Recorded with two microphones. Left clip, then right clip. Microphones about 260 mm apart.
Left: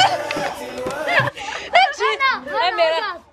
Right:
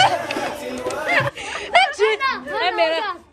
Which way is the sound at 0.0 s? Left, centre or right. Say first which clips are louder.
Even; centre.